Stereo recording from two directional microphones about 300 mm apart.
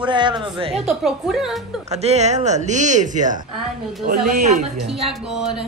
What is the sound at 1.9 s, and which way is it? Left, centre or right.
Speech, right.